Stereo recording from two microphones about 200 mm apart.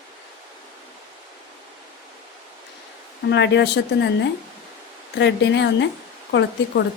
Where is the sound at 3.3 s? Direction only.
60° left (ahead or behind).